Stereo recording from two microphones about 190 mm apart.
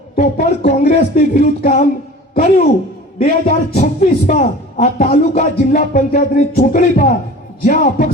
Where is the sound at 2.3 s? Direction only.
45° left (ahead or behind).